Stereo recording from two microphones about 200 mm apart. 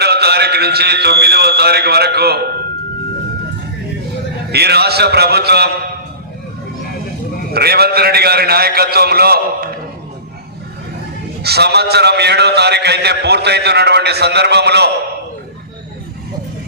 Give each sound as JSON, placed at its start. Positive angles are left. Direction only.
{"t": 0.0, "sound": "a man's voice", "side_deg": -55}
{"t": 4.5, "sound": "a man's voice", "side_deg": -55}
{"t": 7.5, "sound": "a man's voice", "side_deg": -50}
{"t": 11.4, "sound": "a man's voice", "side_deg": -55}